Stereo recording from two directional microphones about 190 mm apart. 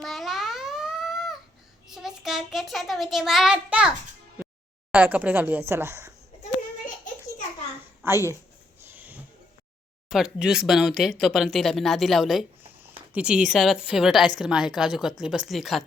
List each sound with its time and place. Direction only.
0.0 s babbling: centre (ahead or behind)
1.9 s a child's voice: centre (ahead or behind)
6.4 s a sound: 40° left (ahead or behind)
8.0 s speech: 15° right (ahead or behind)
8.9 s a sound: 10° right (ahead or behind)
10.1 s speech: centre (ahead or behind)